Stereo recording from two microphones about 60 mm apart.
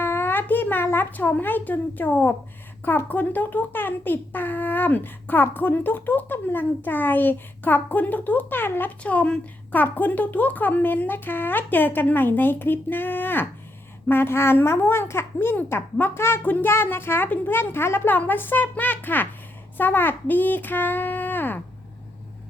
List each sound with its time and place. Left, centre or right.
0.0 s speech: left
9.0 s speech: left
9.7 s a child's voice: left